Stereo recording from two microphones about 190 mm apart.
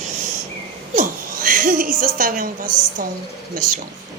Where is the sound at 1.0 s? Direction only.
45° right (ahead or behind).